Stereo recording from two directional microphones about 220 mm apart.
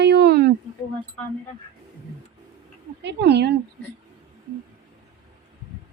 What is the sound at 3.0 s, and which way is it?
Speech, 50° right (ahead or behind).